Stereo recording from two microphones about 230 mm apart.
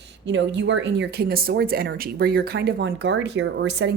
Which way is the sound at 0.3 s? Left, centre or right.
Right.